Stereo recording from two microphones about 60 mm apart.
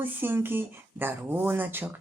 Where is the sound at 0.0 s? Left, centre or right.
Right.